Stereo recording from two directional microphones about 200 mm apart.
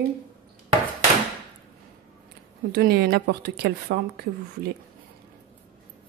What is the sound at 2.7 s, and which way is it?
A woman's voice, 50° right (ahead or behind).